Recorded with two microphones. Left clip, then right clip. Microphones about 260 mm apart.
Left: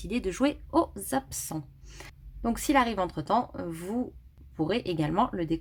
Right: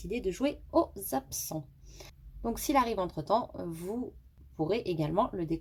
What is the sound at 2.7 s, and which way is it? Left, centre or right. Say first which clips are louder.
Speech: left 3 dB; left.